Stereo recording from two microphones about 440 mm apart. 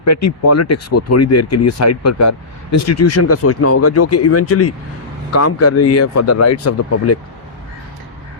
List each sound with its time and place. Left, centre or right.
0.0 s speech: left